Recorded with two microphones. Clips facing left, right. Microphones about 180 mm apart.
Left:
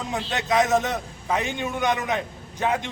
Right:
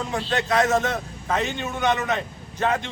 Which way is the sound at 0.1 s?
15° left (ahead or behind).